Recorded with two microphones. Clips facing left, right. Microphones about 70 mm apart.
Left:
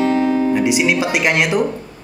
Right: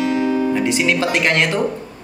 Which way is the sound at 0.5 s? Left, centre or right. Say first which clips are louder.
Left 2 dB; centre.